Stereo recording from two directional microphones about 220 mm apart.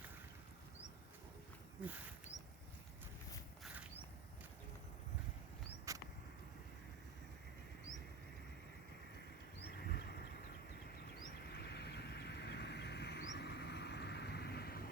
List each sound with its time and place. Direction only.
5.9 s vehicle: 15° right (ahead or behind)
9.6 s a sound: 45° left (ahead or behind)
11.1 s vehicle: 45° left (ahead or behind)